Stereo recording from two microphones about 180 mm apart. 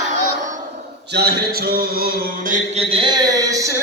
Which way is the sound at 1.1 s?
60° right (ahead or behind).